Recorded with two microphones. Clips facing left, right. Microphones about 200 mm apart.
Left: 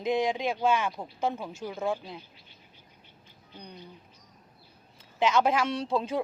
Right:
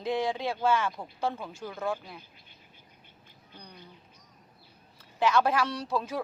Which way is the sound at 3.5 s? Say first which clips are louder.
Left 4 dB; 20° left (ahead or behind).